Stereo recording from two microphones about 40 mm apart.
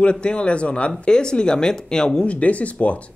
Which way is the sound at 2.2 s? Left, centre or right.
Left.